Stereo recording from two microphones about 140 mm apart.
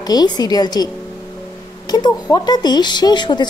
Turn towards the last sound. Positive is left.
turn(degrees=30)  # may be behind; listen again after turning